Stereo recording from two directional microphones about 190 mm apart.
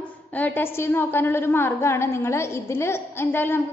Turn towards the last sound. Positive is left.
turn(degrees=10)  # may be behind; listen again after turning